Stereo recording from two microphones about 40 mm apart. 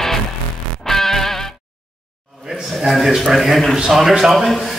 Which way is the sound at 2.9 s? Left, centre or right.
Centre.